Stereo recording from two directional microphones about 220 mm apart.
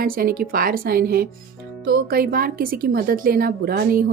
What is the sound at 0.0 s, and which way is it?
A woman's voice, 40° right (ahead or behind).